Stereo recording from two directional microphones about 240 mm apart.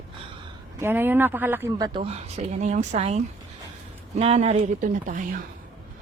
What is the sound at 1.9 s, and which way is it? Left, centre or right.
Speech, right.